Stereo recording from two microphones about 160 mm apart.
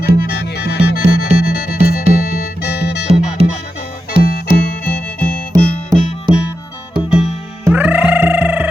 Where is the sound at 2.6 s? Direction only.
90° left.